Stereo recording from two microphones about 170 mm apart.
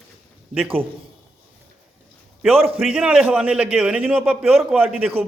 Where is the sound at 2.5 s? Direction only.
35° right (ahead or behind).